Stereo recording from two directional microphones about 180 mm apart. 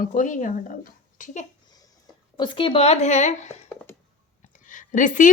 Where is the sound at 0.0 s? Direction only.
45° left (ahead or behind).